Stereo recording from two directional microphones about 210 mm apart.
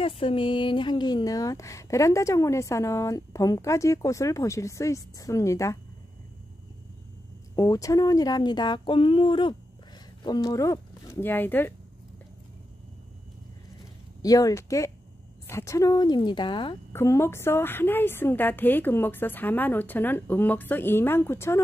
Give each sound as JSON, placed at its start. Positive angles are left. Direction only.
{"t": 0.0, "sound": "speech", "side_deg": 25}
{"t": 7.5, "sound": "speech", "side_deg": 15}
{"t": 14.2, "sound": "speech", "side_deg": 15}
{"t": 16.9, "sound": "speech", "side_deg": 10}